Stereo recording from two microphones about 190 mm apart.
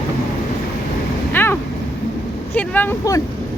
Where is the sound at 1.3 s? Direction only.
10° left (ahead or behind).